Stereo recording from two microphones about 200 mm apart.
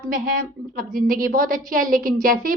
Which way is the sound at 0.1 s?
45° right (ahead or behind).